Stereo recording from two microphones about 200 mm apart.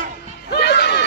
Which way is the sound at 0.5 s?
55° left (ahead or behind).